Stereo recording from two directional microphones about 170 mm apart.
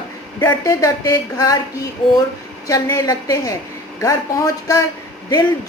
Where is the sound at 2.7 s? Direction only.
20° left (ahead or behind).